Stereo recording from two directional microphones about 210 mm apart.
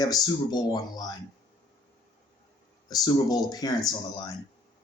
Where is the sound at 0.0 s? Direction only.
20° left (ahead or behind).